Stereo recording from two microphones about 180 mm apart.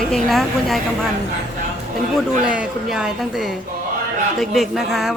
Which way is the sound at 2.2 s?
5° right (ahead or behind).